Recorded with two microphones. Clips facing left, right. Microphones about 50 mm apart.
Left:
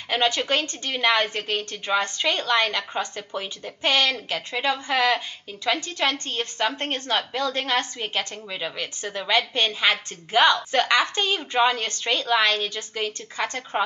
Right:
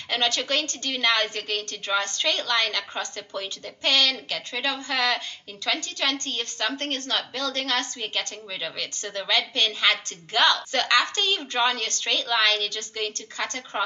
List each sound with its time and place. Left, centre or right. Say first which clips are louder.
0.1 s a woman's voice: left 3 dB; centre